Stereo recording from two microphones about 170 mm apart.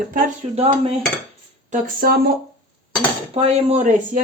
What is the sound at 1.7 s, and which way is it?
Speech, 60° right (ahead or behind).